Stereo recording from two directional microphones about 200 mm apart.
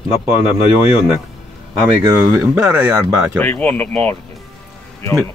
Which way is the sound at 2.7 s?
5° right (ahead or behind).